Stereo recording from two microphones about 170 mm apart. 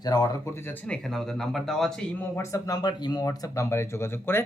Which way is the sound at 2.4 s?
20° left (ahead or behind).